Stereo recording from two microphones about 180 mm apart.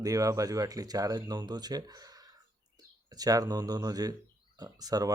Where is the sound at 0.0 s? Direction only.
20° right (ahead or behind).